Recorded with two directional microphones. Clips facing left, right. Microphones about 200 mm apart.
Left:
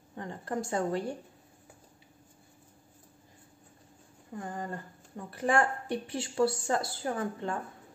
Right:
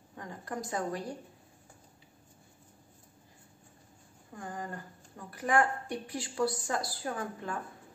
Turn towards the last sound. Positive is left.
turn(degrees=30)  # may be behind; listen again after turning